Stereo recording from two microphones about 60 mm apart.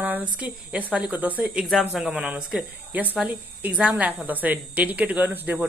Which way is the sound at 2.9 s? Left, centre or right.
Right.